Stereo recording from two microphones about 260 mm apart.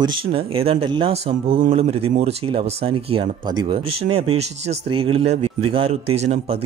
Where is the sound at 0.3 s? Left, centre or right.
Right.